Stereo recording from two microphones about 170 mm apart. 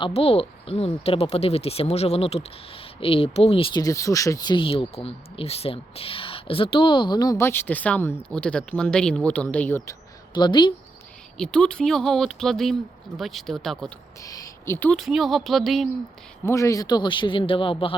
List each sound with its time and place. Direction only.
0.0 s speech: 35° left (ahead or behind); by 9.9 s 15° left (ahead or behind)
10.3 s speech: 25° left (ahead or behind)
11.3 s speech: 5° left (ahead or behind)
14.2 s speech: 20° left (ahead or behind); by 15.9 s centre (ahead or behind)
16.5 s speech: 20° left (ahead or behind)